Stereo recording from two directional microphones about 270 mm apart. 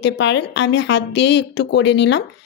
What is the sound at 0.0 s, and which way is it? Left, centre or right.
Speech, left.